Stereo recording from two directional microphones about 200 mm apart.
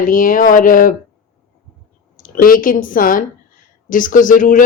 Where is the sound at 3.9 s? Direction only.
40° left (ahead or behind).